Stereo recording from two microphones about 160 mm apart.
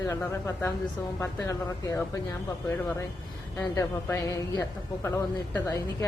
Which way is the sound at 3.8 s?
20° left (ahead or behind).